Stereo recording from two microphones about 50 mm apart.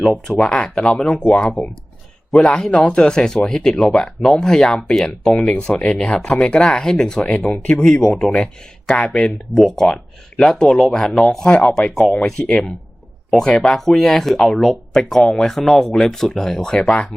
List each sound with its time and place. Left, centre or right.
0.3 s speech: centre
1.1 s speech: left
2.7 s speech: left
7.3 s speech: left
9.6 s speech: centre
13.3 s speech: centre